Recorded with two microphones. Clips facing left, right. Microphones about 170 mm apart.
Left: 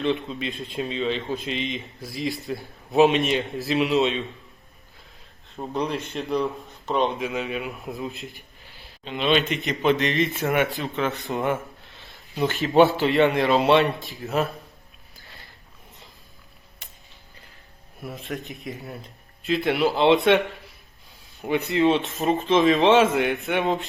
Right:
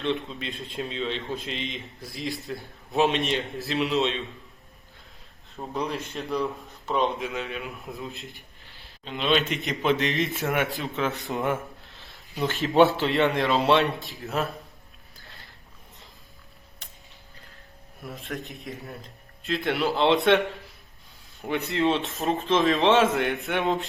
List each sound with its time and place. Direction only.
0.0 s speech: centre (ahead or behind)
5.7 s speech: centre (ahead or behind)
7.6 s a man's voice: 20° left (ahead or behind)
8.1 s speech: centre (ahead or behind)
15.2 s mechanisms: centre (ahead or behind)
18.0 s speech: centre (ahead or behind)